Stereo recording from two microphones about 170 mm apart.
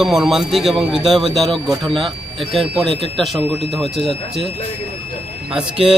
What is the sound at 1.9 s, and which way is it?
Speech, 30° right (ahead or behind).